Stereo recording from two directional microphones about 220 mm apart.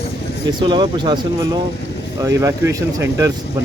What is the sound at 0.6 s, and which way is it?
Speech, 20° right (ahead or behind).